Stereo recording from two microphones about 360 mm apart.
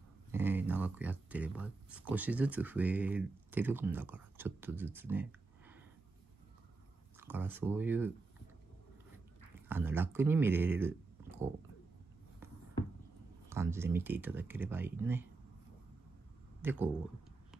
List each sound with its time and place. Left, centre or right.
0.3 s speech: centre
7.2 s speech: centre
9.7 s speech: centre
13.5 s speech: centre
16.6 s speech: centre